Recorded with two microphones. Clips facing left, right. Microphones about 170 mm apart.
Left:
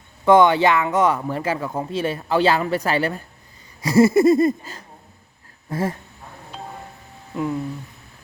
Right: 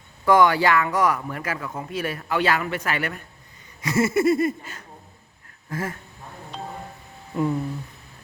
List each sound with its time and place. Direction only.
0.3 s speech: 25° left (ahead or behind)
3.8 s a sound: 35° left (ahead or behind)
7.3 s speech: centre (ahead or behind)